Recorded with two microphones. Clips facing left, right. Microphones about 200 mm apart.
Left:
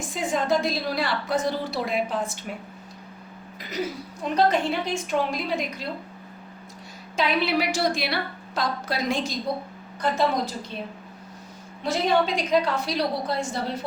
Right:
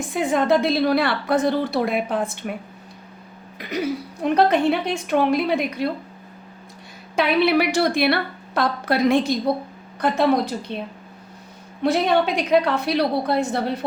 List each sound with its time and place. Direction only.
0.1 s a woman's voice: 60° right (ahead or behind)
4.2 s a woman's voice: 60° right (ahead or behind)
7.2 s a woman's voice: 60° right (ahead or behind)